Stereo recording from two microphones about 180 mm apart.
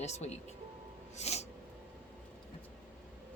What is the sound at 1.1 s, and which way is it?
Music, 35° left (ahead or behind).